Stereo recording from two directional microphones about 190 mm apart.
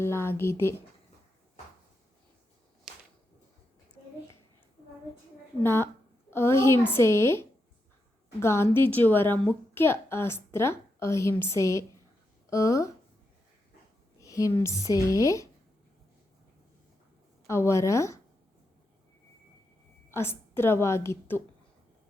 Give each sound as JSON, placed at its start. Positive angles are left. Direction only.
{"t": 0.0, "sound": "a woman's voice", "side_deg": 15}
{"t": 5.6, "sound": "a woman's voice", "side_deg": 15}
{"t": 14.2, "sound": "a woman's voice", "side_deg": 15}
{"t": 17.5, "sound": "a woman's voice", "side_deg": 15}
{"t": 20.1, "sound": "a woman's voice", "side_deg": 10}